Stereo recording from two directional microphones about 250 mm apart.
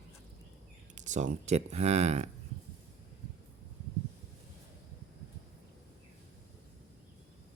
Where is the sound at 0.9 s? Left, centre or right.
Right.